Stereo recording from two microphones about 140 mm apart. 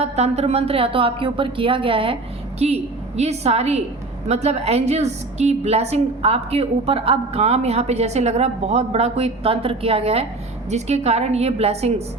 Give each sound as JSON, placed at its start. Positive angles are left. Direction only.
{"t": 0.0, "sound": "a woman's voice", "side_deg": -50}
{"t": 2.6, "sound": "a woman's voice", "side_deg": -50}